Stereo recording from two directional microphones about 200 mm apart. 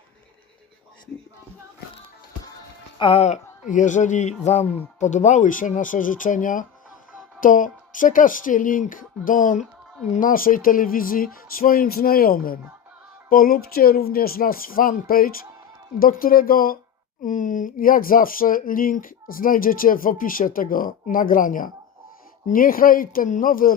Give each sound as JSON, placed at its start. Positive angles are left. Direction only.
{"t": 3.0, "sound": "speech", "side_deg": 30}